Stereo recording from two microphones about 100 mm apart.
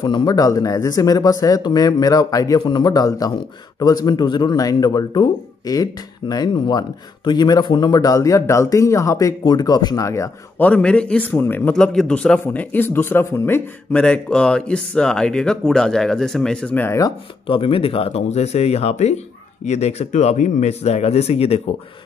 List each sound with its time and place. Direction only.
0.0 s speech: 50° left (ahead or behind); by 9.3 s 30° left (ahead or behind)
9.4 s speech: 45° left (ahead or behind)
10.6 s speech: 10° left (ahead or behind)
11.7 s speech: 5° left (ahead or behind)
12.7 s a man's voice: 20° left (ahead or behind)
13.9 s speech: 10° left (ahead or behind)
16.7 s a man's voice: 25° left (ahead or behind)
17.5 s speech: 65° left (ahead or behind); by 21.7 s 90° left